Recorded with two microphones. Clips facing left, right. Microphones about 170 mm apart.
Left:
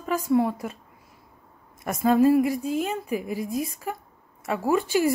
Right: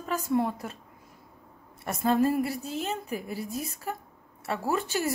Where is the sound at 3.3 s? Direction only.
40° right (ahead or behind).